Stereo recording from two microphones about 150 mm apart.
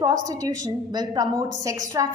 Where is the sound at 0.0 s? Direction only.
25° right (ahead or behind).